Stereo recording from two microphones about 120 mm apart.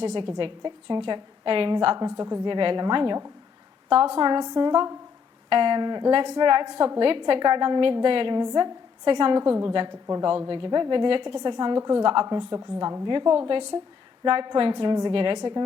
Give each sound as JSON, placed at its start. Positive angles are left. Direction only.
{"t": 0.0, "sound": "a woman's voice", "side_deg": -40}
{"t": 2.0, "sound": "a woman's voice", "side_deg": -30}
{"t": 11.8, "sound": "a woman's voice", "side_deg": -25}
{"t": 12.0, "sound": "a woman's voice", "side_deg": -40}